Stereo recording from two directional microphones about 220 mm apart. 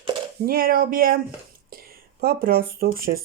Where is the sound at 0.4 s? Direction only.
40° right (ahead or behind).